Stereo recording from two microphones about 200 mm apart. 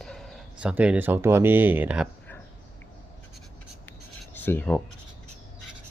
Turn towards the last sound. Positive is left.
turn(degrees=10)  # may be behind; listen again after turning